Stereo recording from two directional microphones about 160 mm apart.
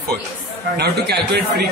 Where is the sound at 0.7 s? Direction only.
90° right.